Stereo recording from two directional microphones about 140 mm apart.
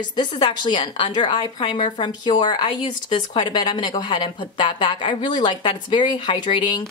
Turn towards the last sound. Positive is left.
turn(degrees=35)  # may be behind; listen again after turning